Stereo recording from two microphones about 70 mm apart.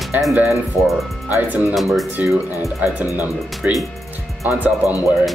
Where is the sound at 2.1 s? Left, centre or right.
Right.